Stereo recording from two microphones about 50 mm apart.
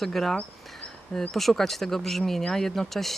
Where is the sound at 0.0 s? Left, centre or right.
Centre.